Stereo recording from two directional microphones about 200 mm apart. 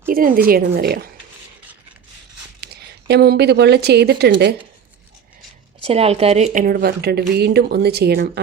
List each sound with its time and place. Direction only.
0.1 s a woman's voice: 45° right (ahead or behind)
3.1 s a woman's voice: 55° right (ahead or behind)
5.8 s speech: 30° right (ahead or behind); by 8.3 s 55° right (ahead or behind)